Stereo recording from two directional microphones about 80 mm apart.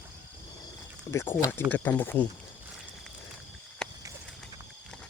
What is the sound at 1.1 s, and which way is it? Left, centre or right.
Speech, left.